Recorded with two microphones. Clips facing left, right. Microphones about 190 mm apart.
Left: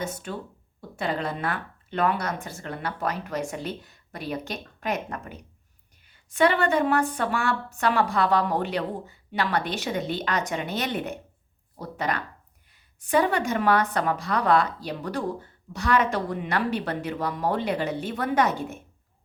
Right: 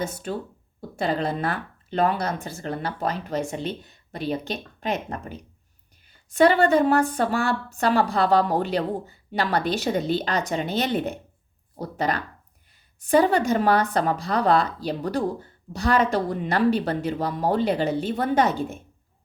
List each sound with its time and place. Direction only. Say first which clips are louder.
0.0 s speech: right 3 dB; 35° right (ahead or behind)